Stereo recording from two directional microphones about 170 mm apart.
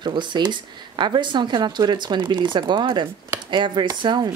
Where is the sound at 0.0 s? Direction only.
25° right (ahead or behind).